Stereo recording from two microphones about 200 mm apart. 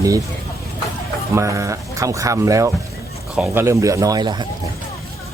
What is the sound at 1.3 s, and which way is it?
Speech, 15° right (ahead or behind).